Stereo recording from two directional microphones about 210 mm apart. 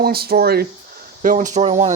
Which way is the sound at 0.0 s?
45° right (ahead or behind).